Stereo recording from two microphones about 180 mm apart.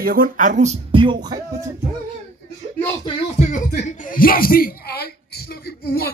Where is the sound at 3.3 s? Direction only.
40° left (ahead or behind).